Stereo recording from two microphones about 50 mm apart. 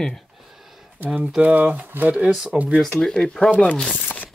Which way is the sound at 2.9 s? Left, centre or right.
Centre.